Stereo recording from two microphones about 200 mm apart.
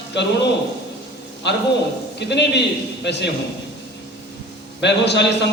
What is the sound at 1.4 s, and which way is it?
A man's voice, 60° left (ahead or behind).